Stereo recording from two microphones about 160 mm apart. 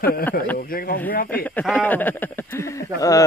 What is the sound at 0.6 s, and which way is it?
Speech, 65° left (ahead or behind).